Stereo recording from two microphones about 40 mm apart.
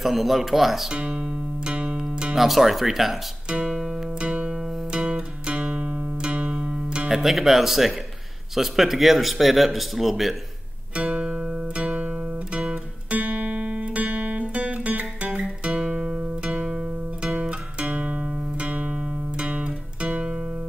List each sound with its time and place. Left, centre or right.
0.0 s speech: centre
0.8 s speech: centre
1.6 s music: right
2.3 s speech: centre
3.6 s music: centre
7.1 s speech: centre
11.0 s music: right
11.2 s guitar: centre
13.1 s music: right
16.4 s music: right